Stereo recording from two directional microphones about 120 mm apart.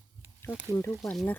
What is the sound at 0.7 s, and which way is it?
Speech, 20° left (ahead or behind).